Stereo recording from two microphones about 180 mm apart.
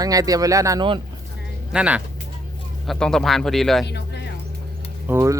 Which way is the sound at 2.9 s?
5° left (ahead or behind).